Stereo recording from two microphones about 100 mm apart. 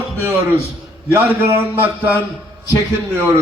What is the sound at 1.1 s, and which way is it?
Speech, 20° right (ahead or behind).